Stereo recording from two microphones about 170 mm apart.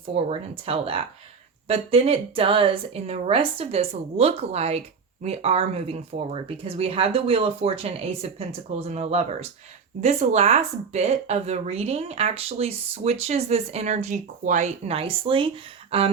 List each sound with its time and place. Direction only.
0.1 s speech: 35° right (ahead or behind)